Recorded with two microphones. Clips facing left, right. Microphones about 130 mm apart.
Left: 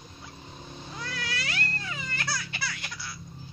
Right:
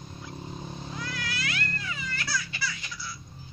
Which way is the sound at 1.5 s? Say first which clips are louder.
Even; 35° left (ahead or behind).